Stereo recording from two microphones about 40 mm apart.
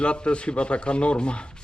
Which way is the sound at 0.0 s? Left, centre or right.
Left.